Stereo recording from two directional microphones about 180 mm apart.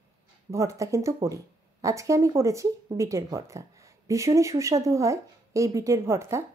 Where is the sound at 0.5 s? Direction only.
15° right (ahead or behind).